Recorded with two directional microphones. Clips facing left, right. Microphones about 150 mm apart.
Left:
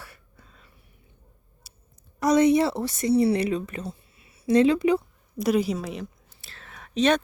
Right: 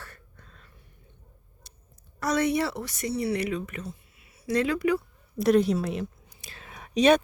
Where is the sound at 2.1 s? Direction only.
15° left (ahead or behind).